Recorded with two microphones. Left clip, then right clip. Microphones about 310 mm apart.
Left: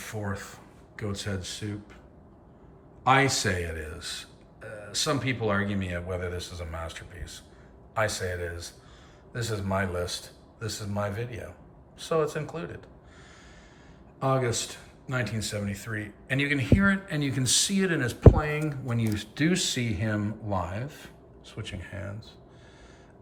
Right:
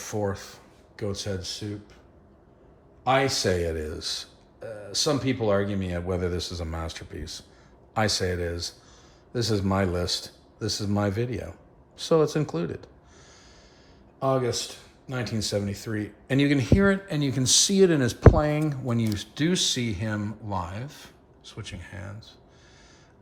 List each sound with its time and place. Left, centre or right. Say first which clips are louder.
0.0 s speech: right 6 dB; centre
3.0 s speech: even; centre
14.2 s speech: right 2 dB; centre